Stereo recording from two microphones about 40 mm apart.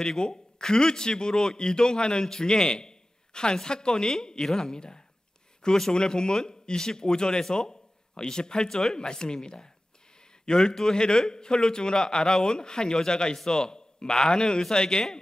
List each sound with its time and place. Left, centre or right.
0.0 s a man's voice: centre